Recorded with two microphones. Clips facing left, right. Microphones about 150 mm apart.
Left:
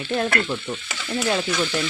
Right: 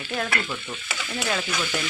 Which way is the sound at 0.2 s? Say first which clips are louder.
Left 4 dB; 20° left (ahead or behind).